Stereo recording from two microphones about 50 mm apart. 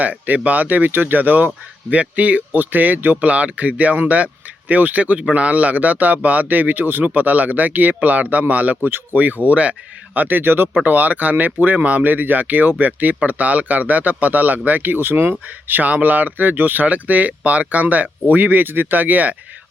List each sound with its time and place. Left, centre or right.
0.0 s a man's voice: right
10.2 s a man's voice: right
10.8 s a man's voice: right